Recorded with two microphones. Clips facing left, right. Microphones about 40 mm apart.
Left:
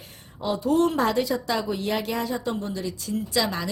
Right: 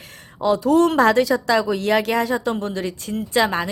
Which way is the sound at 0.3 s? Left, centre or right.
Right.